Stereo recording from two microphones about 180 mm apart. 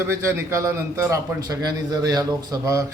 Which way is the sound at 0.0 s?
15° right (ahead or behind).